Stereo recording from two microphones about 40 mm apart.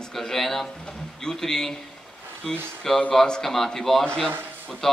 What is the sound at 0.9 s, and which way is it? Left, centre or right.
Speech, centre.